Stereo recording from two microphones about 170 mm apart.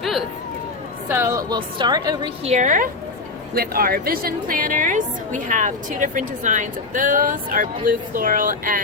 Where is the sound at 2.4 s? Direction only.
40° right (ahead or behind).